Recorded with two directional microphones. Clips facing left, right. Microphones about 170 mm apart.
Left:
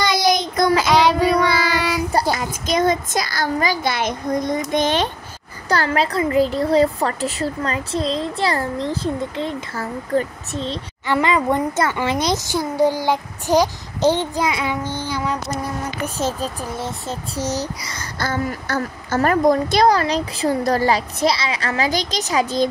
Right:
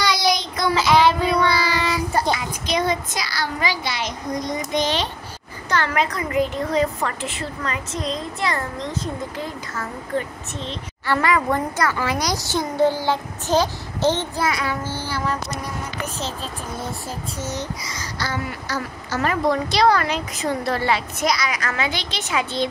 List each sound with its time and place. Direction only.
0.1 s child singing: 50° left (ahead or behind)
0.7 s child singing: 15° left (ahead or behind)
2.3 s a child's voice: 45° left (ahead or behind)
5.7 s speech: 35° left (ahead or behind)
11.1 s a woman's voice: 20° left (ahead or behind)
12.5 s a child's voice: 10° left (ahead or behind)
15.0 s a sound: 15° left (ahead or behind)
16.2 s a child's voice: 45° left (ahead or behind)
16.7 s a woman's voice: 25° left (ahead or behind)
17.4 s a child's voice: 80° left; by 22.7 s 40° left (ahead or behind)